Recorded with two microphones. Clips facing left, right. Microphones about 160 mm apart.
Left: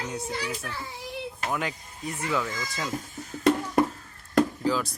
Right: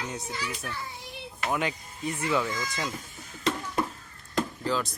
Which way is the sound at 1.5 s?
Centre (ahead or behind).